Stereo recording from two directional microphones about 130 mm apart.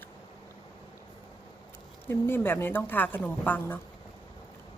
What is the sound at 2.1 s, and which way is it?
A woman's voice, 15° left (ahead or behind).